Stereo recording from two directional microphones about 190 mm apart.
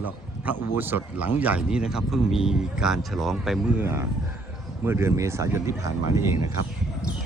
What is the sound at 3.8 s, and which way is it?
Speech, 15° right (ahead or behind).